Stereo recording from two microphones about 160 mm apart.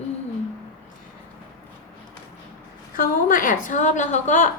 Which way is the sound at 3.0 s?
60° left (ahead or behind).